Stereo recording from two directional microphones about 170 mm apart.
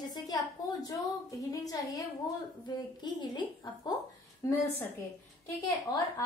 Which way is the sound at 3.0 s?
25° left (ahead or behind).